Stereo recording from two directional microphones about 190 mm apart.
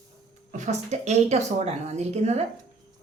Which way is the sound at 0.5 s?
40° right (ahead or behind).